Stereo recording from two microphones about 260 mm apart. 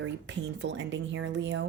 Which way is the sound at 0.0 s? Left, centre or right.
Right.